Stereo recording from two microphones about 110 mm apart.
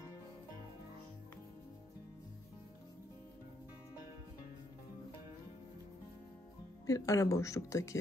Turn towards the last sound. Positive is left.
turn(degrees=30)  # may be behind; listen again after turning